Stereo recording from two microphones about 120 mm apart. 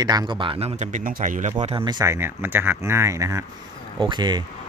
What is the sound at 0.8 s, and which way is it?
Speech, 90° right.